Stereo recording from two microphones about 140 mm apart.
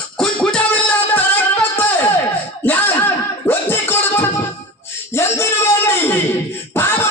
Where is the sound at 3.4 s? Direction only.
15° left (ahead or behind).